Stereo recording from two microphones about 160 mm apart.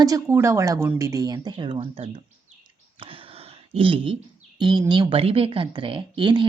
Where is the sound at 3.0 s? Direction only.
35° right (ahead or behind).